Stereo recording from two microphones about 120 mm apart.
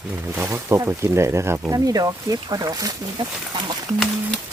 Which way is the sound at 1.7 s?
30° right (ahead or behind).